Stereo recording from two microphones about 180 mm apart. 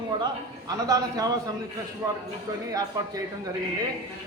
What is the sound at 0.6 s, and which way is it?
Speech, 20° right (ahead or behind).